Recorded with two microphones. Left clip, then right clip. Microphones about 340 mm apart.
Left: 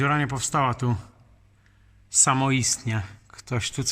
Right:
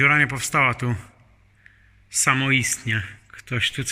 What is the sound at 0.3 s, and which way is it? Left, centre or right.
Speech, centre.